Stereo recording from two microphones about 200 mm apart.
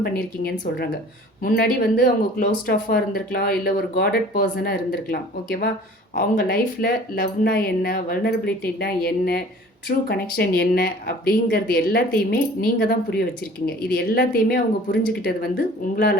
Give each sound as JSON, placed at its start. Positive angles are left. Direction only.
{"t": 0.0, "sound": "speech", "side_deg": 50}